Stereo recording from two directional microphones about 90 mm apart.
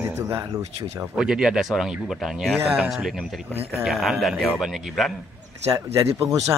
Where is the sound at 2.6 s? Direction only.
20° right (ahead or behind).